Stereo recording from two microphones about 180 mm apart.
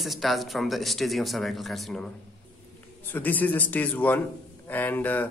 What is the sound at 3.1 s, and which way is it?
A man's voice, 10° left (ahead or behind).